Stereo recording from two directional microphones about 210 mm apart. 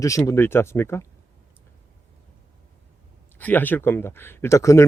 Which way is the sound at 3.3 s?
10° left (ahead or behind).